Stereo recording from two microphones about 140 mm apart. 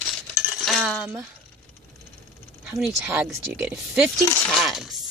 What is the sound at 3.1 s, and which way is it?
Speech, 15° right (ahead or behind).